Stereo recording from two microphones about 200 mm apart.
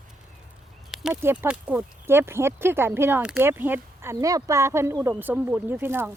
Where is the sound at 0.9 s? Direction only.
Centre (ahead or behind).